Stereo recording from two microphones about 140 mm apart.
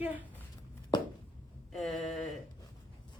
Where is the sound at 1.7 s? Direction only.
Centre (ahead or behind).